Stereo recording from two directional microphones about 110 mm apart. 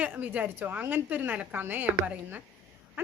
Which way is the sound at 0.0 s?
15° right (ahead or behind).